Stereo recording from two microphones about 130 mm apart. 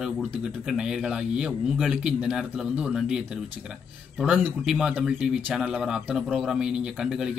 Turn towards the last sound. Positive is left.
turn(degrees=-5)  # may be behind; listen again after turning